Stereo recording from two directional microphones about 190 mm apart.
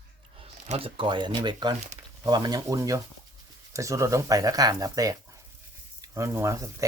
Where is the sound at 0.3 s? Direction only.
30° right (ahead or behind).